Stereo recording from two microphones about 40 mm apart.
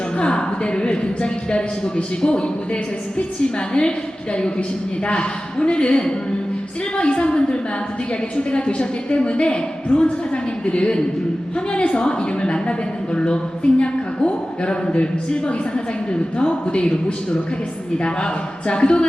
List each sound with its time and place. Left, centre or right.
0.2 s a woman's voice: left
3.8 s a woman's voice: left
18.0 s a woman's voice: left